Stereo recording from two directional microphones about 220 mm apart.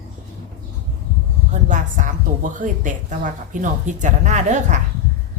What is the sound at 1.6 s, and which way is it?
A woman's voice, 35° right (ahead or behind).